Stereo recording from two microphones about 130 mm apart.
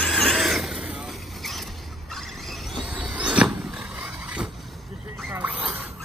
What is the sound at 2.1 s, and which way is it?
Vehicle, centre (ahead or behind).